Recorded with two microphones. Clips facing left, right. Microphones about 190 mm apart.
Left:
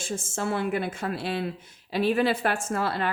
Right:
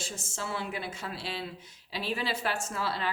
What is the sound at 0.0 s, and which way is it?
A woman's voice, 50° left (ahead or behind).